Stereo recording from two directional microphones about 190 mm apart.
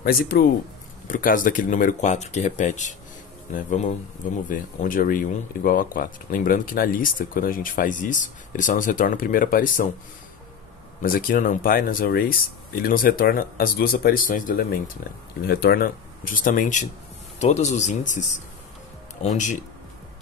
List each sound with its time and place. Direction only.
0.0 s speech: 50° left (ahead or behind)
11.0 s speech: 50° left (ahead or behind)